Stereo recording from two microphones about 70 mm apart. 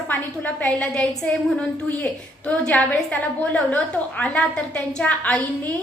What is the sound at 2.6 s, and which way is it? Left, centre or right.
A woman's voice, centre.